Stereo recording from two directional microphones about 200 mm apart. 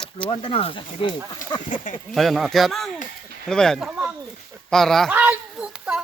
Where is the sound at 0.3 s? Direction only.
30° left (ahead or behind).